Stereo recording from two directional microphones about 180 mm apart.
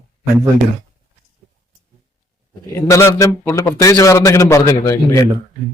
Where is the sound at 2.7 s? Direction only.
15° left (ahead or behind).